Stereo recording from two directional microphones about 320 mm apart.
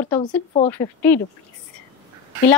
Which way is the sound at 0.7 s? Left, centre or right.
Centre.